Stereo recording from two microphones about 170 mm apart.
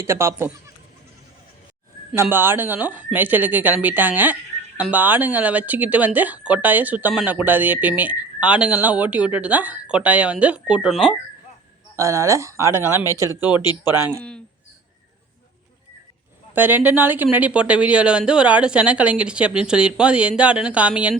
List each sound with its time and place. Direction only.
0.0 s speech: 15° right (ahead or behind)
2.2 s speech: 15° right (ahead or behind)
11.9 s speech: 20° right (ahead or behind)
13.5 s speech: 25° left (ahead or behind)
13.8 s speech: 15° right (ahead or behind)
16.6 s speech: 10° right (ahead or behind)